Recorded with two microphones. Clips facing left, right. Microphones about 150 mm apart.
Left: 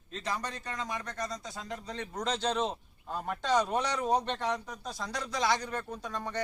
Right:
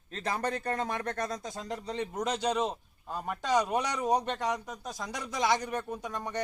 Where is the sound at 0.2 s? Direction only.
55° right (ahead or behind).